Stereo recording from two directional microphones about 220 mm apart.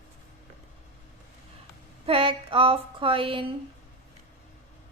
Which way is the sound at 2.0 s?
25° right (ahead or behind).